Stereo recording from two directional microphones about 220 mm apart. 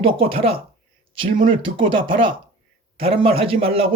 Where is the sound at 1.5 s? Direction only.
25° right (ahead or behind).